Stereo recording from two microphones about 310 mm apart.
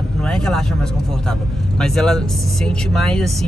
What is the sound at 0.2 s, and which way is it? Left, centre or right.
Speech, centre.